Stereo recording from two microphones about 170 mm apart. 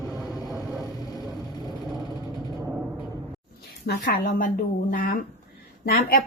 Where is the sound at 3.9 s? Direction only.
55° left (ahead or behind).